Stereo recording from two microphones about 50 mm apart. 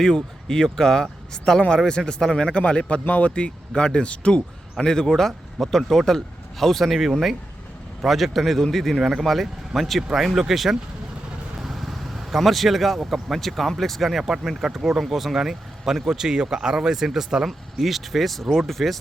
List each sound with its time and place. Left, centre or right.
0.0 s speech: centre
11.6 s vehicle: centre
13.1 s speech: centre